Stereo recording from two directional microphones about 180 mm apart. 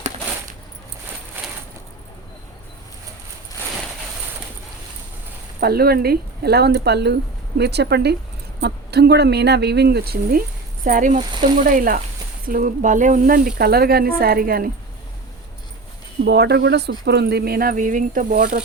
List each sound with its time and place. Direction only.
5.5 s speech: 60° right (ahead or behind)
10.8 s speech: 50° right (ahead or behind)
16.2 s speech: 65° right (ahead or behind)